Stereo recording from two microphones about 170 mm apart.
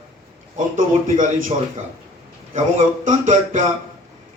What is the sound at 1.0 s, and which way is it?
Speech, 50° right (ahead or behind).